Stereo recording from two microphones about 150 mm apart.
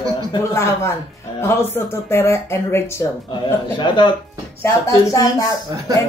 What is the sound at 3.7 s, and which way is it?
Speech, 30° left (ahead or behind).